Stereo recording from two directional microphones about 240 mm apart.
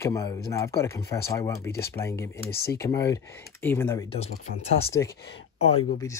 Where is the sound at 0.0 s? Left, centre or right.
Centre.